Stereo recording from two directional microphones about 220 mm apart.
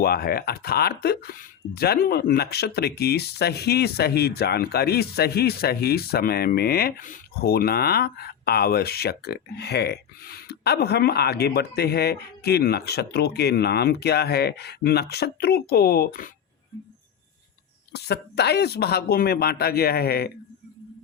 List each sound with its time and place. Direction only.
0.0 s speech: 45° left (ahead or behind)
17.9 s speech: 50° left (ahead or behind)